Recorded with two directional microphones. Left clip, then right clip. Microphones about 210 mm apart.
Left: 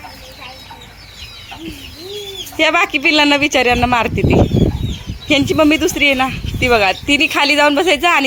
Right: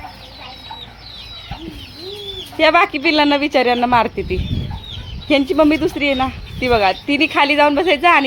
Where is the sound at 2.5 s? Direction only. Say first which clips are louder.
Right 1 dB; centre (ahead or behind).